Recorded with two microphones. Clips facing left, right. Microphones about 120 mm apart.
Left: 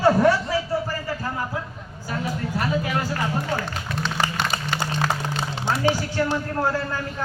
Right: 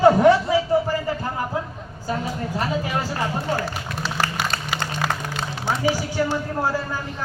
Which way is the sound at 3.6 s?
5° right (ahead or behind).